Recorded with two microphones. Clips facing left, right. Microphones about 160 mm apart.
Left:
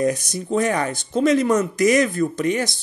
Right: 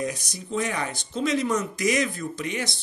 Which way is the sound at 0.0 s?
50° left (ahead or behind).